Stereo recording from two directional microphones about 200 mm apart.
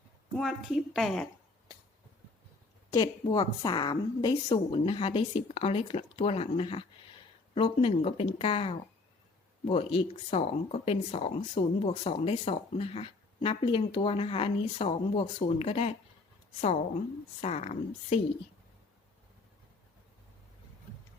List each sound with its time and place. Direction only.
0.3 s a woman's voice: centre (ahead or behind)
2.9 s speech: 20° left (ahead or behind)
17.4 s a woman's voice: 30° left (ahead or behind)